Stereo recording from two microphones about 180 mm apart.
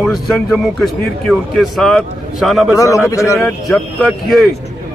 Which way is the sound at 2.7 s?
15° left (ahead or behind).